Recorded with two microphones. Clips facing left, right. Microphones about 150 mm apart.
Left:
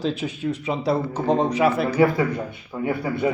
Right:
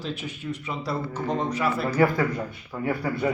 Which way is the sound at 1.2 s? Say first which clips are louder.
Left 7 dB; 35° left (ahead or behind).